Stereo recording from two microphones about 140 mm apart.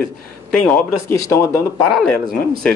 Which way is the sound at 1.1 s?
20° left (ahead or behind).